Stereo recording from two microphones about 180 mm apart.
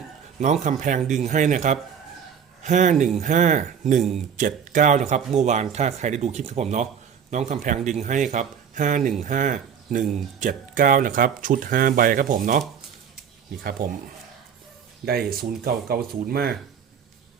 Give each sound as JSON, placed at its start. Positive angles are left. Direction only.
{"t": 0.3, "sound": "speech", "side_deg": -40}
{"t": 15.0, "sound": "speech", "side_deg": -55}